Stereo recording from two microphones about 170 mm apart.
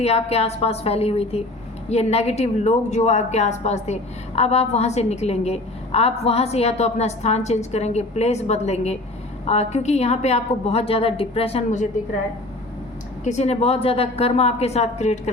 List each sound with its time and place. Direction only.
0.0 s a woman's voice: 40° left (ahead or behind)
13.2 s a woman's voice: 40° left (ahead or behind)